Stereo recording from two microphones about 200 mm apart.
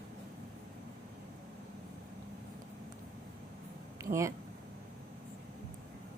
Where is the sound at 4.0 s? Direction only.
15° right (ahead or behind).